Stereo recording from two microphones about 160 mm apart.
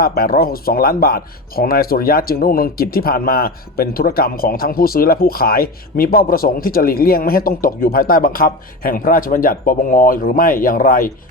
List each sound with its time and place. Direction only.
0.0 s speech: 70° left (ahead or behind)